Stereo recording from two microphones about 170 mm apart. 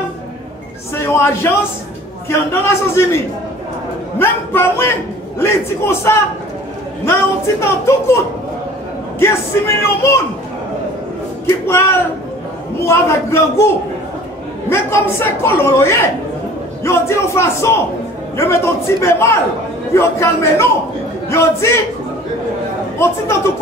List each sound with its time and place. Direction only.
0.9 s a man's voice: 15° left (ahead or behind)
4.2 s a woman's voice: 15° left (ahead or behind)
7.6 s a woman's voice: 15° left (ahead or behind)
9.2 s a woman's voice: 15° left (ahead or behind)
11.6 s a woman's voice: 15° left (ahead or behind)
14.7 s a woman's voice: 15° left (ahead or behind)
22.9 s a woman's voice: 15° left (ahead or behind)